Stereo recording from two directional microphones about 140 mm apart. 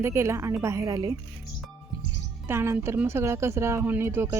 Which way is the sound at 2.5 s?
15° right (ahead or behind).